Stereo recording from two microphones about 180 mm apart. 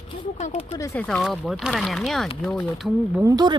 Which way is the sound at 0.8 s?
15° left (ahead or behind).